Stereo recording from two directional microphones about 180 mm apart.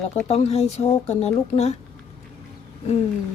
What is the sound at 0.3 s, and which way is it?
Speech, 35° left (ahead or behind).